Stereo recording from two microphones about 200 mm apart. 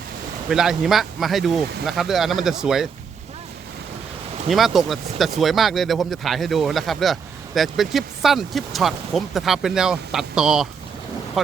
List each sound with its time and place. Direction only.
0.5 s speech: centre (ahead or behind)
4.4 s speech: centre (ahead or behind)